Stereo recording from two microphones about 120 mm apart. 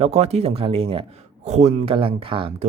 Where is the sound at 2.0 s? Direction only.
45° right (ahead or behind).